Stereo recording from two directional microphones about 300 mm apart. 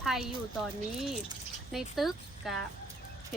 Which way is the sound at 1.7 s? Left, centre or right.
Centre.